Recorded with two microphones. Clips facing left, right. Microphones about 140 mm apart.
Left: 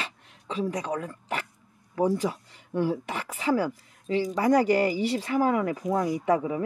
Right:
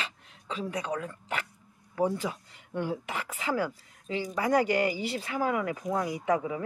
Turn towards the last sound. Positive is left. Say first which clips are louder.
# left 4 dB
turn(degrees=35)  # may be behind; listen again after turning